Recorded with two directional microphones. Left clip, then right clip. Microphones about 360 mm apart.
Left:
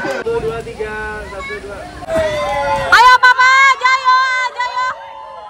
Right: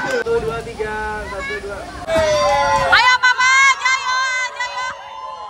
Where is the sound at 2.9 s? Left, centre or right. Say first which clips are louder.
Left 8 dB; centre.